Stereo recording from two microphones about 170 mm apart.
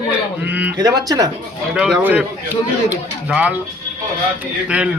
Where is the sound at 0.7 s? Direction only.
20° right (ahead or behind).